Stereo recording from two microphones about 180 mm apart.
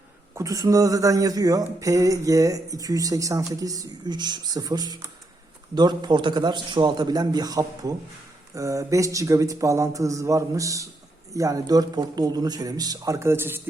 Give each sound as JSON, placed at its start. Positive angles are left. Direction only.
{"t": 0.3, "sound": "speech", "side_deg": -20}